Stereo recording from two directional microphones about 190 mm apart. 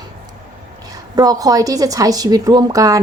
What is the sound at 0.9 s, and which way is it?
A woman's voice, 20° right (ahead or behind).